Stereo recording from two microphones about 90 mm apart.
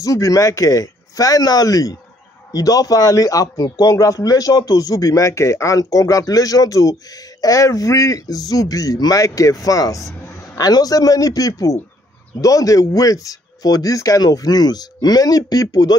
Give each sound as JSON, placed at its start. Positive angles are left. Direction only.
{"t": 0.0, "sound": "a man's voice", "side_deg": 40}